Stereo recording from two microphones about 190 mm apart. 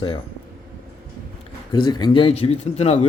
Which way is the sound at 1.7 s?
20° left (ahead or behind).